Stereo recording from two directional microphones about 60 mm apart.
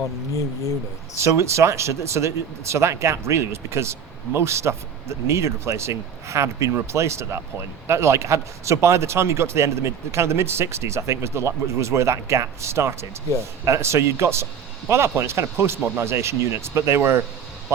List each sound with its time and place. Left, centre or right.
1.2 s speech: right